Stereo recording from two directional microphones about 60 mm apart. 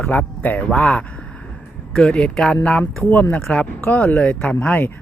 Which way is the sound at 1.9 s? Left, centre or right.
Centre.